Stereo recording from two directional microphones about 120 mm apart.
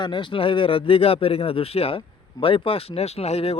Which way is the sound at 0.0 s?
40° left (ahead or behind).